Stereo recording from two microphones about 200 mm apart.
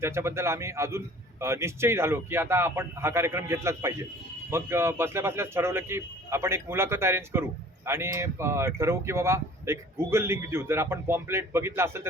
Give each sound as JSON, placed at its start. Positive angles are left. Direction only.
{"t": 0.0, "sound": "speech", "side_deg": -15}